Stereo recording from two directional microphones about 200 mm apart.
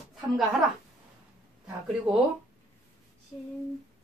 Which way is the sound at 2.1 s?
30° right (ahead or behind).